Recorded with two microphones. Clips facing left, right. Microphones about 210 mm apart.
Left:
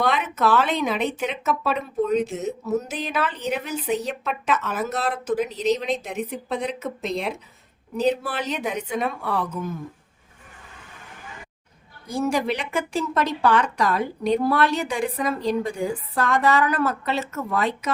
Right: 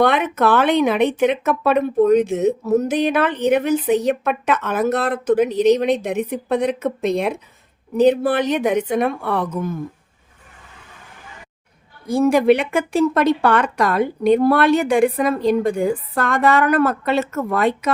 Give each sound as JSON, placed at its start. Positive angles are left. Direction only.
{"t": 0.0, "sound": "speech", "side_deg": -60}
{"t": 12.0, "sound": "speech", "side_deg": -55}